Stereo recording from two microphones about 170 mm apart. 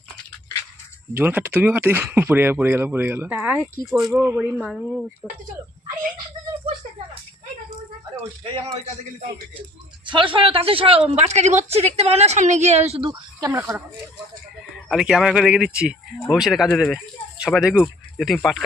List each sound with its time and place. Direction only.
1.1 s speech: 10° right (ahead or behind)
3.8 s speech: centre (ahead or behind)
4.1 s speech: 15° right (ahead or behind)
8.4 s a woman's voice: 35° right (ahead or behind)
10.1 s a woman's voice: 30° right (ahead or behind)
13.5 s speech: 15° right (ahead or behind)
14.8 s speech: 5° right (ahead or behind)